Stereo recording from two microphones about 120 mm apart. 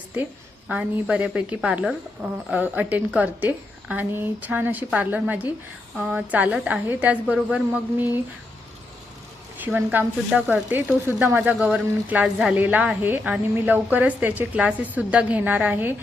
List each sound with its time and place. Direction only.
0.7 s a woman's voice: 10° right (ahead or behind)
9.6 s a woman's voice: 15° right (ahead or behind)